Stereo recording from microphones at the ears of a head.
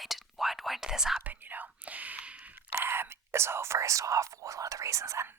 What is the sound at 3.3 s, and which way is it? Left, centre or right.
Speech, right.